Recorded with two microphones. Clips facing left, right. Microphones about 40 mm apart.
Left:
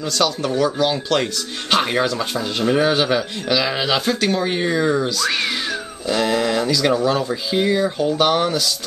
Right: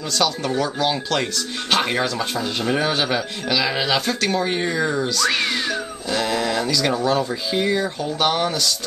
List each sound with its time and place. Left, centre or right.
0.2 s speech: centre